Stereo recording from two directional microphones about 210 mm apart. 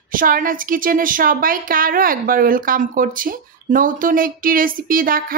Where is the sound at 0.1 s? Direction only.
40° right (ahead or behind).